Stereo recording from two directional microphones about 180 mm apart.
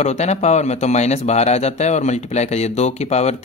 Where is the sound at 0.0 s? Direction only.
40° left (ahead or behind).